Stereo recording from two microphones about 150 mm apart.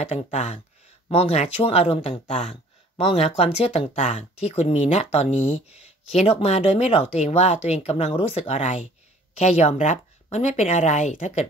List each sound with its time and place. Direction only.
0.1 s speech: 50° left (ahead or behind)